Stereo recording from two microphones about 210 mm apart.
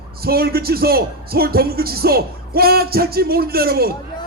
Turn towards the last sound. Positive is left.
turn(degrees=-45)  # may be behind; listen again after turning